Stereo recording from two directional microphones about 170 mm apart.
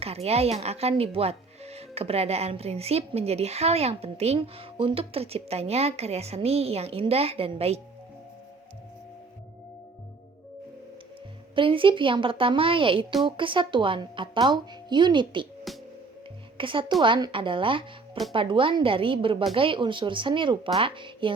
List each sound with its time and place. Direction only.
0.0 s speech: 35° right (ahead or behind)
11.5 s a woman's voice: 30° right (ahead or behind)
15.7 s music: centre (ahead or behind)
16.6 s a woman's voice: 30° right (ahead or behind)